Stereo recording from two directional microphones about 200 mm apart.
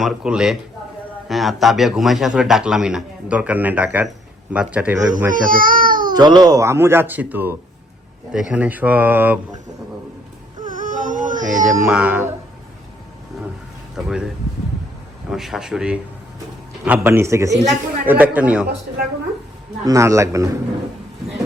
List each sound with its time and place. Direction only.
0.0 s a man's voice: 5° right (ahead or behind)
5.3 s baby cry: 45° right (ahead or behind)
6.1 s speech: 20° right (ahead or behind)
10.6 s baby cry: 40° right (ahead or behind)
11.9 s speech: 5° right (ahead or behind)
13.9 s speech: 5° right (ahead or behind)
15.3 s a man's voice: centre (ahead or behind)
19.8 s speech: 15° right (ahead or behind)